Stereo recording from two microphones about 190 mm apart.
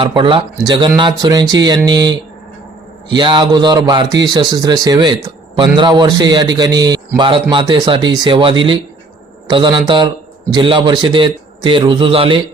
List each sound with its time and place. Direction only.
0.0 s speech: 25° right (ahead or behind)